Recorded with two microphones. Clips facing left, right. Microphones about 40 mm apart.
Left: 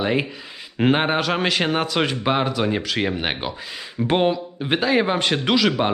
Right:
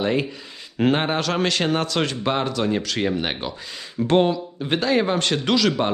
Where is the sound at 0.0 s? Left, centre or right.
Centre.